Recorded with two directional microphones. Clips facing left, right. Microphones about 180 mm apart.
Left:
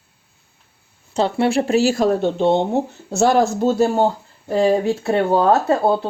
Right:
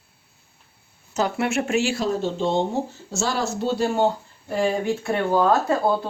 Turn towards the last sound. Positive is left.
turn(degrees=25)  # may be behind; listen again after turning